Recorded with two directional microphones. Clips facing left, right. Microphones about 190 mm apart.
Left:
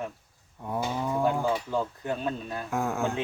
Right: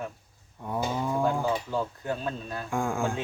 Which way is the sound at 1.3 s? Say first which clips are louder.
Left 1 dB; 10° left (ahead or behind).